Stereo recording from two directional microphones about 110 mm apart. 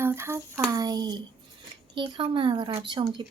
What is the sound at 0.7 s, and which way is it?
Speech, 35° right (ahead or behind).